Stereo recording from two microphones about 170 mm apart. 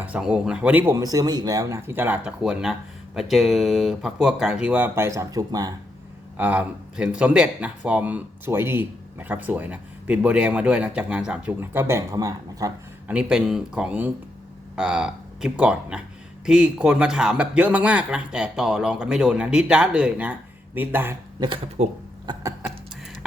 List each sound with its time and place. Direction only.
0.0 s speech: 5° right (ahead or behind)
6.3 s speech: 10° right (ahead or behind)
13.1 s speech: 5° right (ahead or behind)
21.4 s speech: 30° right (ahead or behind)